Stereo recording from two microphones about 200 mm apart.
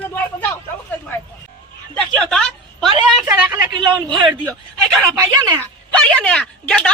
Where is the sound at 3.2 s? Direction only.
10° right (ahead or behind).